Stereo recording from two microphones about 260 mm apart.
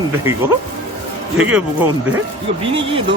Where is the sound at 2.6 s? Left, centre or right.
Right.